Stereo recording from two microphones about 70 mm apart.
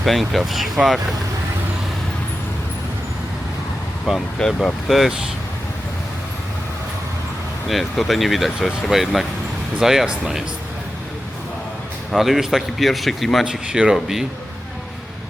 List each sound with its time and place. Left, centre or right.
0.0 s speech: centre
4.4 s speech: centre
7.7 s speech: centre
12.1 s speech: centre
13.5 s speech: centre